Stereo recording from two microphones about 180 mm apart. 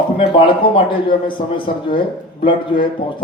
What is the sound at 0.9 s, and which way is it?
Speech, 30° left (ahead or behind).